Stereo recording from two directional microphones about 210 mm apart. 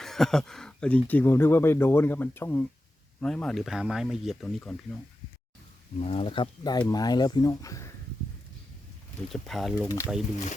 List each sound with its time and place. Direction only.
0.0 s speech: centre (ahead or behind)
6.0 s speech: 25° left (ahead or behind)
9.3 s speech: centre (ahead or behind)